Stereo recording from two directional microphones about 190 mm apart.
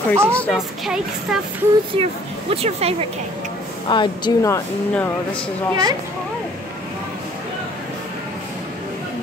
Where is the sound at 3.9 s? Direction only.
25° left (ahead or behind).